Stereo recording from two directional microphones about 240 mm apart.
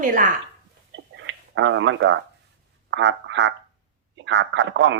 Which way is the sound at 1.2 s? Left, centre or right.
Right.